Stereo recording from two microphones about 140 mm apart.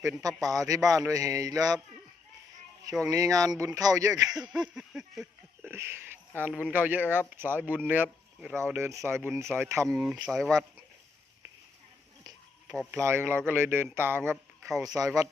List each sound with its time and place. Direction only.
0.5 s speech: 25° right (ahead or behind)
3.0 s speech: 25° right (ahead or behind)
4.5 s a sound: 5° right (ahead or behind)
5.7 s speech: 15° right (ahead or behind)
7.6 s speech: 10° left (ahead or behind)
7.9 s speech: 10° right (ahead or behind)
9.9 s speech: 5° right (ahead or behind)
12.6 s speech: 5° right (ahead or behind)
13.0 s speech: 20° right (ahead or behind)